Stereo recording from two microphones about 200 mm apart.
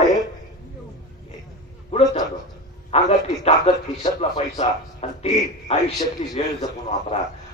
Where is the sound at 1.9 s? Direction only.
30° left (ahead or behind).